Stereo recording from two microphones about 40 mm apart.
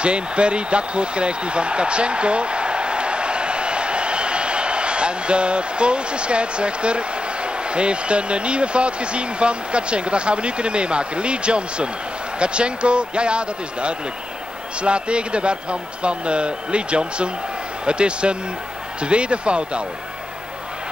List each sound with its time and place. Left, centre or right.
0.0 s a man's voice: right